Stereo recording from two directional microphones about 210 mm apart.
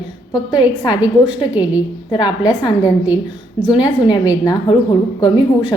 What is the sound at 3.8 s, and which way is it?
Speech, 20° left (ahead or behind).